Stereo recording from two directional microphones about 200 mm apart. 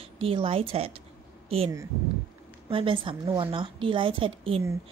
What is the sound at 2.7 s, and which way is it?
A woman's voice, 25° right (ahead or behind).